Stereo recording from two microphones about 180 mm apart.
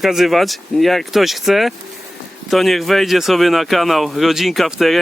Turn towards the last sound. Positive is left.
turn(degrees=0)  # may be behind; listen again after turning